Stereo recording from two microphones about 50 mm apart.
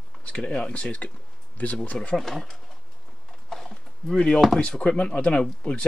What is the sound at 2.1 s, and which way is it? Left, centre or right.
Speech, centre.